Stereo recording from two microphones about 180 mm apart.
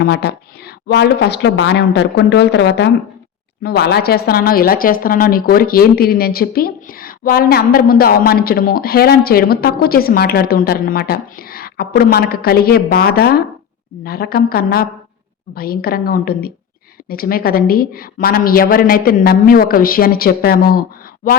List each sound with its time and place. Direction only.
0.0 s speech: 60° left (ahead or behind)
3.6 s speech: 60° left (ahead or behind)